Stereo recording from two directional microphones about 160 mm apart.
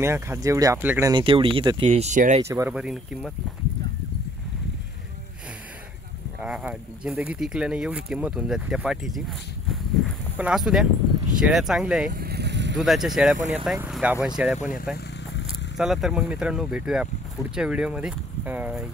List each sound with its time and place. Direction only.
0.0 s speech: 15° right (ahead or behind)
1.1 s speech: 35° right (ahead or behind)
1.9 s speech: 45° right (ahead or behind)
2.4 s speech: 20° right (ahead or behind)
2.7 s speech: 5° right (ahead or behind)
6.4 s speech: 5° right (ahead or behind)
10.3 s speech: 5° right (ahead or behind)
12.1 s vehicle: 80° right
12.7 s speech: centre (ahead or behind)